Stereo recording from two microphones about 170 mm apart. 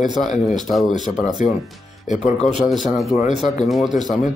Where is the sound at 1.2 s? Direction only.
50° left (ahead or behind).